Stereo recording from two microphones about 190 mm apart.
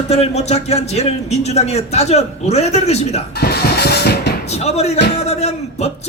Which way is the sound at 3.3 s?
55° left (ahead or behind).